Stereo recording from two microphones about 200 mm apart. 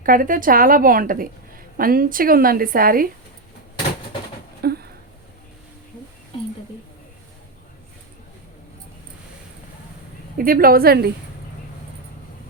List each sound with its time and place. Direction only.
0.0 s a woman's voice: 45° right (ahead or behind)
4.6 s a sound: 50° right (ahead or behind)
10.3 s a woman's voice: 45° right (ahead or behind)